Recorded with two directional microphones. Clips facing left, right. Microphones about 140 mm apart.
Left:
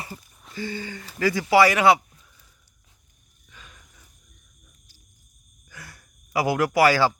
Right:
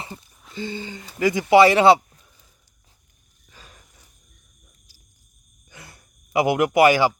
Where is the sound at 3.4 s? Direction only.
35° right (ahead or behind).